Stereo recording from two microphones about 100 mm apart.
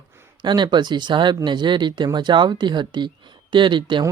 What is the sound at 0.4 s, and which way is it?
Speech, 50° right (ahead or behind).